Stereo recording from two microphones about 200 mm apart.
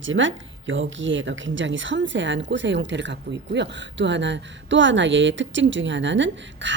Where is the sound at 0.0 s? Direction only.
70° right (ahead or behind).